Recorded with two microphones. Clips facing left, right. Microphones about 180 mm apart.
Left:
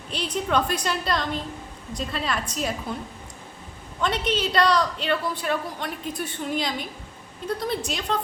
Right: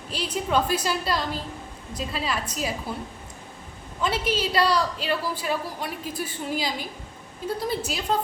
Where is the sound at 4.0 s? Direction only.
5° right (ahead or behind).